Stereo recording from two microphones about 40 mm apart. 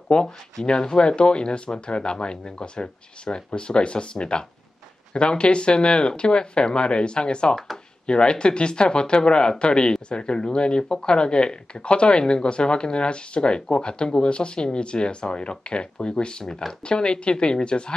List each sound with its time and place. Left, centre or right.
0.1 s speech: left